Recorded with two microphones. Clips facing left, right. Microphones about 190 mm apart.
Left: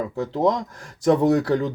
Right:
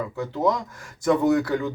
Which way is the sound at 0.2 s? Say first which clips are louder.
Left 2 dB; 35° left (ahead or behind).